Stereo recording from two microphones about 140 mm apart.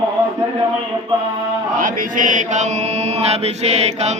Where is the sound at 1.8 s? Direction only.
70° right (ahead or behind).